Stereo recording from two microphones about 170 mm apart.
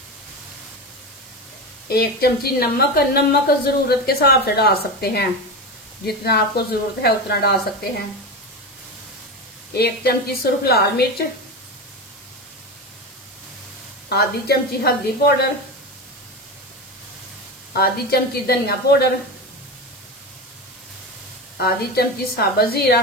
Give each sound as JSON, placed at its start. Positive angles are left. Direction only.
{"t": 1.9, "sound": "a woman's voice", "side_deg": 65}
{"t": 9.8, "sound": "a woman's voice", "side_deg": 70}
{"t": 14.0, "sound": "a woman's voice", "side_deg": 70}
{"t": 17.7, "sound": "a woman's voice", "side_deg": 65}
{"t": 21.5, "sound": "a woman's voice", "side_deg": 65}